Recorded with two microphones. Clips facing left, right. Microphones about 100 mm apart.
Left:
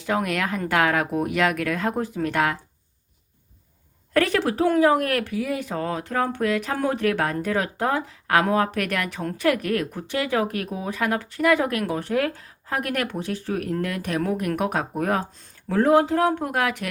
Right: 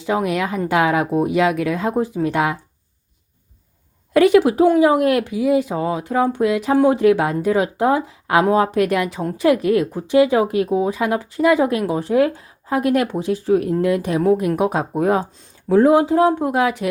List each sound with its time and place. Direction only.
0.0 s speech: 10° right (ahead or behind)
4.1 s speech: 15° right (ahead or behind)